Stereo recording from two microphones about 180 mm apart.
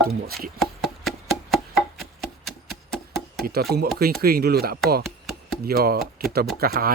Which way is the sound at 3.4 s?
60° right (ahead or behind).